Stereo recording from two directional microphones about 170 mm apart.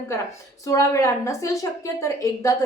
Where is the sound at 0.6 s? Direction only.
20° left (ahead or behind).